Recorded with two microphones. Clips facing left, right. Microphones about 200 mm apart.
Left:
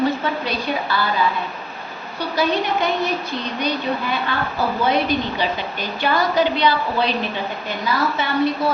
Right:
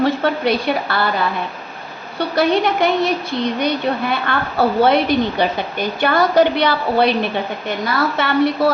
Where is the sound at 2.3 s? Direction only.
75° right (ahead or behind).